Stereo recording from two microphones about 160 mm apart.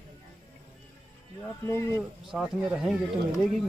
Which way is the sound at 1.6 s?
15° left (ahead or behind).